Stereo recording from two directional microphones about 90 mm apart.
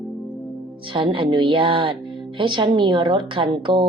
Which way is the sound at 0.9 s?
75° right (ahead or behind).